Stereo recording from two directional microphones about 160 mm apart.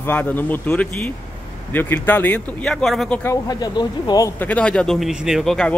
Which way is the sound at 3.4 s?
25° left (ahead or behind).